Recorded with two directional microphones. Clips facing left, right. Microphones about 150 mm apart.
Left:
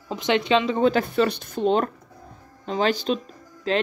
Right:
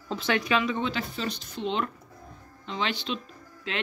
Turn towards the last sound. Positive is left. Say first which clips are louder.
# left 10 dB
turn(degrees=35)  # may be behind; listen again after turning